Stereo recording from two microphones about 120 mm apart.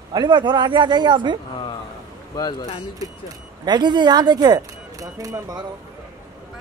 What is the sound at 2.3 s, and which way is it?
Speech, 30° left (ahead or behind).